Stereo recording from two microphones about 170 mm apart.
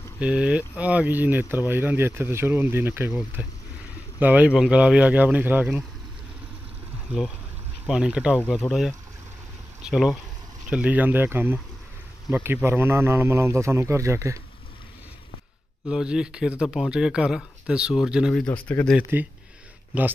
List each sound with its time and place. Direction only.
0.2 s speech: 5° right (ahead or behind)
7.9 s speech: 5° right (ahead or behind)
9.8 s speech: 5° right (ahead or behind)
15.9 s speech: 5° right (ahead or behind)
18.5 s speech: 10° left (ahead or behind)
19.1 s speech: 15° right (ahead or behind)